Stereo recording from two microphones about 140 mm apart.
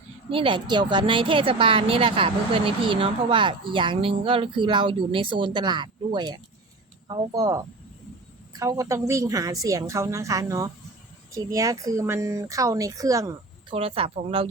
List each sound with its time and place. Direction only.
0.3 s a woman's voice: 40° right (ahead or behind)
13.7 s a woman's voice: 40° right (ahead or behind)